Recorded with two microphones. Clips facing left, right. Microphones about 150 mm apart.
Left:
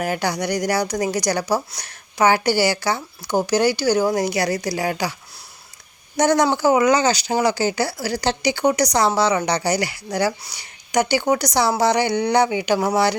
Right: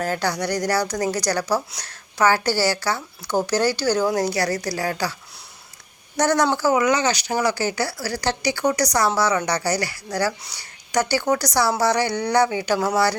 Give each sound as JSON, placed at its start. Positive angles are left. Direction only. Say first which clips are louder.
{"t": 0.0, "sound": "speech", "louder": "left 1 dB", "side_deg": 15}
{"t": 6.1, "sound": "speech", "louder": "left 2 dB", "side_deg": 15}
{"t": 6.8, "sound": "a woman's voice", "louder": "left 3 dB", "side_deg": 35}